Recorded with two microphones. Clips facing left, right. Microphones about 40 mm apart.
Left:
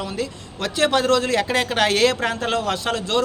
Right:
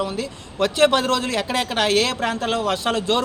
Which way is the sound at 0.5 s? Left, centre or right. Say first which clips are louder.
Right 3 dB; right.